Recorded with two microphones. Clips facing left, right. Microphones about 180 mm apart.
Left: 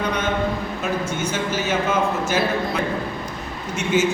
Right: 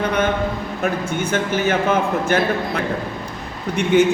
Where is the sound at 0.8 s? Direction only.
55° right (ahead or behind).